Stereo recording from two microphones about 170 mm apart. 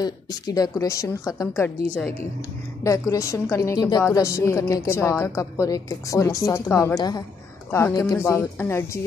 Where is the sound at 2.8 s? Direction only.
20° left (ahead or behind).